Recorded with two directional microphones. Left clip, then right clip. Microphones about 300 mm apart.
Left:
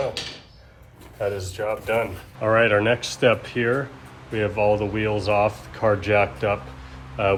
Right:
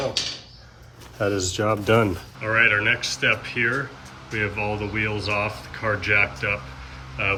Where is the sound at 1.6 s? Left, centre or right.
Right.